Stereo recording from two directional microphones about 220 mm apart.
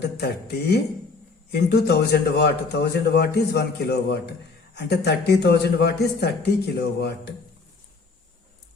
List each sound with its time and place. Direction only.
0.2 s a man's voice: 50° left (ahead or behind)